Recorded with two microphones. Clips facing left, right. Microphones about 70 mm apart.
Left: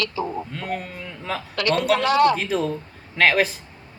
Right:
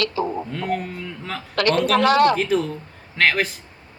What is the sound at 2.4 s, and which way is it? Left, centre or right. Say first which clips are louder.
Speech: right 2 dB; centre.